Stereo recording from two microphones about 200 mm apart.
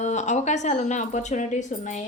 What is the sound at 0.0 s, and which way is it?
A woman's voice, 35° left (ahead or behind).